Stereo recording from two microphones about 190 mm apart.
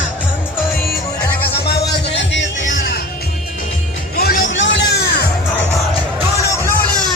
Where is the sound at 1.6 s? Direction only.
60° left (ahead or behind).